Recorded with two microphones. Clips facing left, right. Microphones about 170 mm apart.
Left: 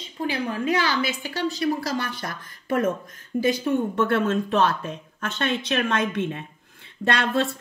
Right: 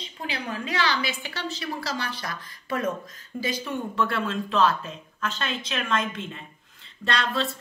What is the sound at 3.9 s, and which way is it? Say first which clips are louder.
Speech: left 5 dB; 50° left (ahead or behind).